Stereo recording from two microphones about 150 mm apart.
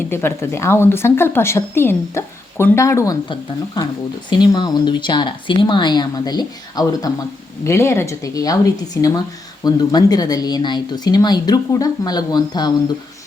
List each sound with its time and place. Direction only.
0.1 s a woman's voice: 15° left (ahead or behind)